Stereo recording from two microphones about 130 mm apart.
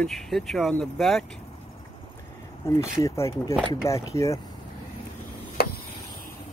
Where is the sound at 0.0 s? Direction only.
Centre (ahead or behind).